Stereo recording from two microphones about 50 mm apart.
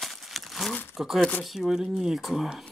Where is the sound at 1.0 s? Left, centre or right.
Centre.